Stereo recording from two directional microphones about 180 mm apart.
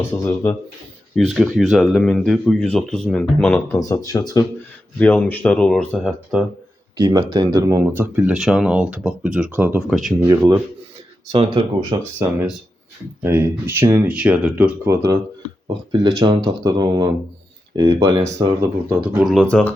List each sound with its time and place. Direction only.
0.1 s speech: 15° left (ahead or behind)
1.1 s speech: centre (ahead or behind)
3.8 s speech: 20° left (ahead or behind)
4.9 s speech: 5° left (ahead or behind)
6.9 s speech: 20° right (ahead or behind); by 10.2 s centre (ahead or behind)
10.2 s speech: 15° right (ahead or behind)
15.6 s speech: 30° right (ahead or behind)
18.9 s speech: 5° right (ahead or behind)